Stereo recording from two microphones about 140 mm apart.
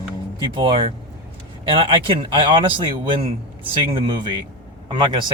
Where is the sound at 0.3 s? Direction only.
35° right (ahead or behind).